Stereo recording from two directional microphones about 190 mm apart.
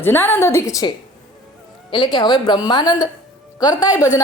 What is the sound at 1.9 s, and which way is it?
A man's voice, 25° left (ahead or behind).